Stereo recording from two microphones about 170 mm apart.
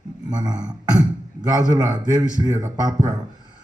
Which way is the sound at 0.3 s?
25° right (ahead or behind).